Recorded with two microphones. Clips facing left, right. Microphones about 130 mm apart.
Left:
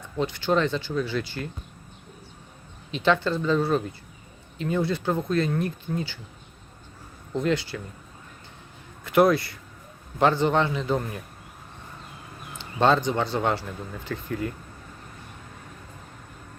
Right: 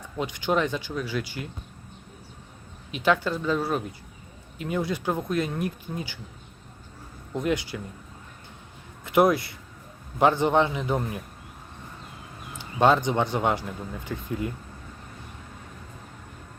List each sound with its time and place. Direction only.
0.2 s speech: 15° right (ahead or behind)
2.9 s speech: 10° right (ahead or behind)
7.3 s speech: 15° right (ahead or behind)
9.0 s speech: 20° right (ahead or behind)
12.5 s speech: 10° right (ahead or behind)